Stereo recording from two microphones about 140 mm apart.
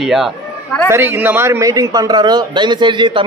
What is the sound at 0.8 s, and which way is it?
A man's voice, 15° right (ahead or behind).